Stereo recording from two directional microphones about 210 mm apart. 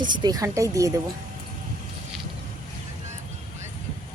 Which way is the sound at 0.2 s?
20° right (ahead or behind).